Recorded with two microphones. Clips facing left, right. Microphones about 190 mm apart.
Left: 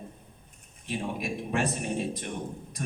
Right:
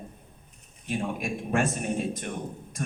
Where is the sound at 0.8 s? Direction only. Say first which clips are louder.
Right 2 dB; 50° right (ahead or behind).